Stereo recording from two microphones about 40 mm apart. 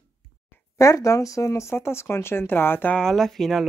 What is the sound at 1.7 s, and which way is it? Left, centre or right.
Speech, left.